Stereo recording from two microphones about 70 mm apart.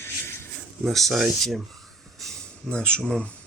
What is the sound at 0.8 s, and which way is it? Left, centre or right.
Speech, centre.